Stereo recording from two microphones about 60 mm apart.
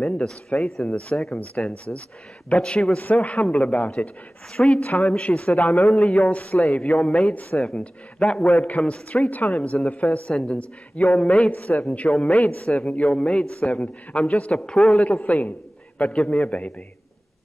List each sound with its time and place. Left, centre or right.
0.0 s a man's voice: centre
0.6 s speech: centre
0.8 s a man's voice: left
11.5 s a man's voice: left